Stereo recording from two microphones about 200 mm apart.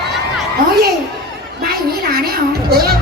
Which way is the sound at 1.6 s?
50° right (ahead or behind).